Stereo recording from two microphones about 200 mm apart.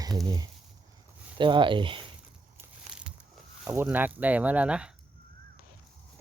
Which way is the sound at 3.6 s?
10° right (ahead or behind).